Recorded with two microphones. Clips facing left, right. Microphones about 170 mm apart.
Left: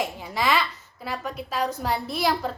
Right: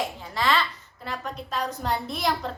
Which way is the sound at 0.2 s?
10° left (ahead or behind).